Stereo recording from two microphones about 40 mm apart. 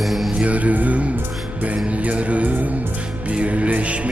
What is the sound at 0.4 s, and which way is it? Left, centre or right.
Music, right.